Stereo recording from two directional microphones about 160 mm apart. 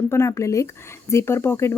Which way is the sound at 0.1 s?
15° left (ahead or behind).